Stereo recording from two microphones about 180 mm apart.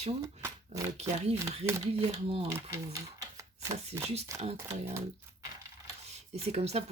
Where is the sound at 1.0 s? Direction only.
35° right (ahead or behind).